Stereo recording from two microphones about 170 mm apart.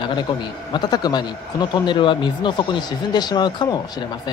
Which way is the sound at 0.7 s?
25° left (ahead or behind).